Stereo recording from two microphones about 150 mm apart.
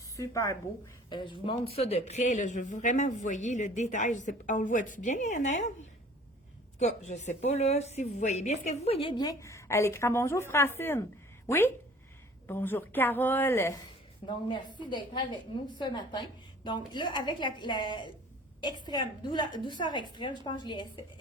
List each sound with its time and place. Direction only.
0.2 s a woman's voice: 20° left (ahead or behind)
1.1 s speech: 35° left (ahead or behind); by 5.7 s 50° left (ahead or behind)
6.7 s a woman's voice: 50° left (ahead or behind); by 13.7 s 15° left (ahead or behind)
14.3 s a woman's voice: 30° left (ahead or behind)